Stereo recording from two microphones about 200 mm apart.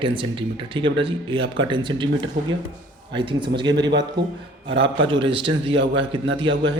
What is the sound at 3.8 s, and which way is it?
Speech, 60° right (ahead or behind).